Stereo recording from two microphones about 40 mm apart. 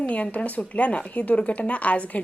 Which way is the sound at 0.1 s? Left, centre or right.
Left.